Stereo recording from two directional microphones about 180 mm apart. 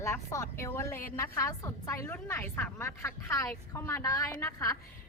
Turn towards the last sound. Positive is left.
turn(degrees=20)  # may be behind; listen again after turning